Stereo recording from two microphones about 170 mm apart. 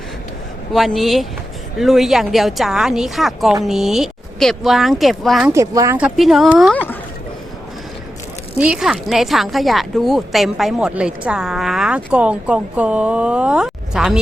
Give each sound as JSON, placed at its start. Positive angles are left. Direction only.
{"t": 0.7, "sound": "a woman's voice", "side_deg": 0}
{"t": 5.5, "sound": "speech", "side_deg": -20}
{"t": 6.0, "sound": "a woman's voice", "side_deg": -5}
{"t": 8.5, "sound": "a woman's voice", "side_deg": -5}